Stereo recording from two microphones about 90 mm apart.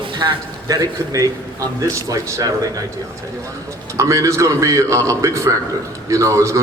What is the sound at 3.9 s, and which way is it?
A man's voice, 35° right (ahead or behind).